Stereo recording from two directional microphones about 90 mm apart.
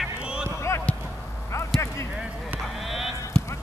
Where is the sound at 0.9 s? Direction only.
15° left (ahead or behind).